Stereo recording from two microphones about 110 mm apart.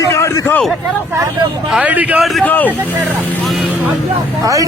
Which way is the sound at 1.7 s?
10° right (ahead or behind).